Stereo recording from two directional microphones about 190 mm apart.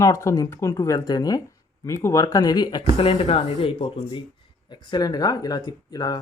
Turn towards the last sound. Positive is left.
turn(degrees=20)  # may be behind; listen again after turning